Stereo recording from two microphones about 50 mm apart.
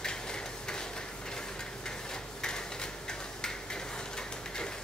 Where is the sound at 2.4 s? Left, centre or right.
Centre.